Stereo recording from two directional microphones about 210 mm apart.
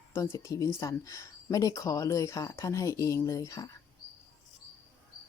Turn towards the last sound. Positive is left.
turn(degrees=15)  # may be behind; listen again after turning